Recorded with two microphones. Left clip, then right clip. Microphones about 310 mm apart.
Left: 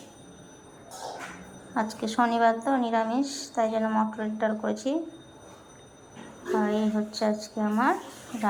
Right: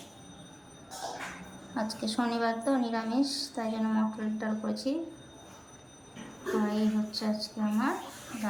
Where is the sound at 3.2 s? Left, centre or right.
Centre.